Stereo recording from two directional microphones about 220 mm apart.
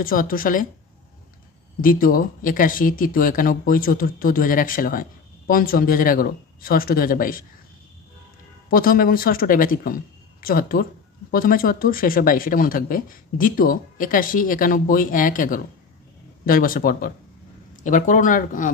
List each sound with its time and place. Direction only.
0.0 s speech: 40° left (ahead or behind)
1.8 s speech: 40° left (ahead or behind)
8.6 s speech: 40° left (ahead or behind)